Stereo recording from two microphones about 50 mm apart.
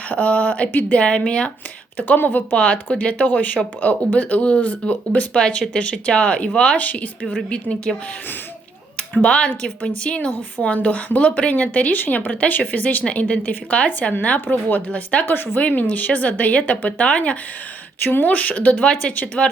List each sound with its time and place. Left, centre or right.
0.1 s speech: left
0.7 s speech: left
0.9 s speech: left
2.0 s speech: left
2.9 s speech: left
6.7 s speech: left
7.5 s speech: left
9.0 s speech: left
14.4 s speech: left
14.8 s speech: left
15.3 s speech: left
15.6 s speech: left
18.0 s speech: left